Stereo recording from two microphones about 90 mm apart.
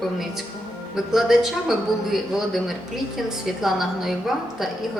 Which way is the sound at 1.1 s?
5° right (ahead or behind).